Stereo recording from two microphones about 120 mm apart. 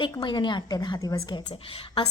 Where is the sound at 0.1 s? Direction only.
35° left (ahead or behind).